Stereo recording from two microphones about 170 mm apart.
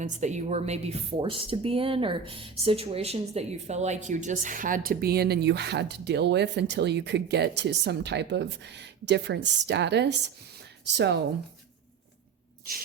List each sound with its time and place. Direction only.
0.0 s speech: 45° right (ahead or behind); by 11.2 s 85° right
12.7 s rub: 60° right (ahead or behind)